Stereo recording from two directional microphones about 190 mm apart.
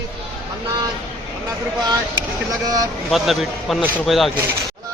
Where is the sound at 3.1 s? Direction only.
Centre (ahead or behind).